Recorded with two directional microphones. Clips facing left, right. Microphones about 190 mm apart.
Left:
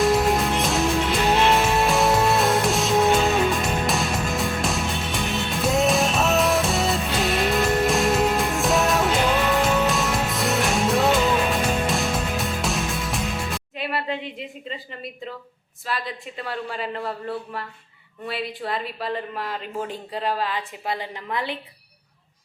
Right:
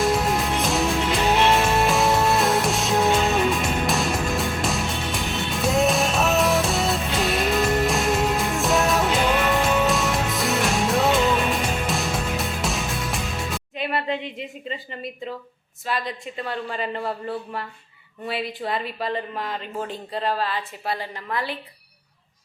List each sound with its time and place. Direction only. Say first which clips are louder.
0.0 s music: left 2 dB; centre (ahead or behind)
15.9 s a woman's voice: right 2 dB; centre (ahead or behind); by 21.6 s 20° left (ahead or behind)